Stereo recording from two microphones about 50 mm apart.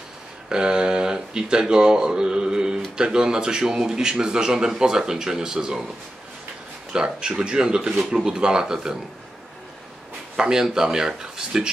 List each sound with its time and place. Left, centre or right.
0.5 s speech: centre
6.9 s speech: centre
10.3 s speech: centre